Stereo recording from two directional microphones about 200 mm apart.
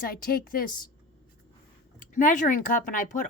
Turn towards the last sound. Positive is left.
turn(degrees=40)  # may be behind; listen again after turning